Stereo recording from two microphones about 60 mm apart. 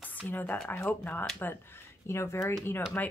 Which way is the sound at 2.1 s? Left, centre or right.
Left.